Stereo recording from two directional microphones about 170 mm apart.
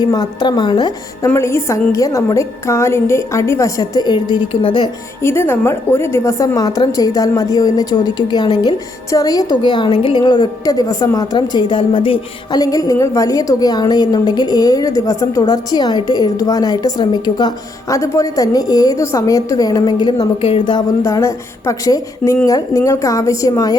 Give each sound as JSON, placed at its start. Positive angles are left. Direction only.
{"t": 0.0, "sound": "a woman's voice", "side_deg": 25}
{"t": 1.3, "sound": "a woman's voice", "side_deg": 15}
{"t": 5.2, "sound": "a woman's voice", "side_deg": 15}
{"t": 21.0, "sound": "a woman's voice", "side_deg": 15}